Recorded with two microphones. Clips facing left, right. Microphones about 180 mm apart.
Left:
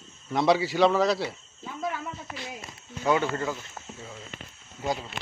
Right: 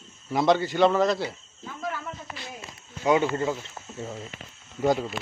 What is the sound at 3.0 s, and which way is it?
Speech, 20° right (ahead or behind).